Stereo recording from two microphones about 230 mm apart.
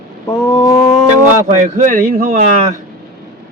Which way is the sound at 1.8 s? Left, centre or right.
Right.